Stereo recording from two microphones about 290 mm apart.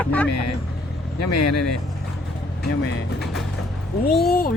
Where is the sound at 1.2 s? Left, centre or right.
Left.